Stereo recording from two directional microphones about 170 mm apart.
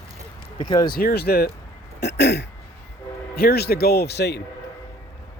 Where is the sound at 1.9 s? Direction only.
80° left.